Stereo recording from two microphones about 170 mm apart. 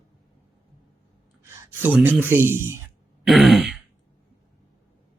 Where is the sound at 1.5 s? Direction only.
10° right (ahead or behind).